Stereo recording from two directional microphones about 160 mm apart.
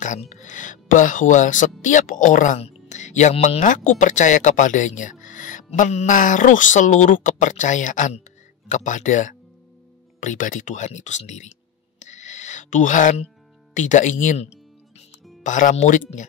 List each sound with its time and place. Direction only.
0.0 s speech: 50° left (ahead or behind)
12.0 s a sound: 50° left (ahead or behind)
13.7 s music: 50° left (ahead or behind)
15.4 s speech: 50° left (ahead or behind)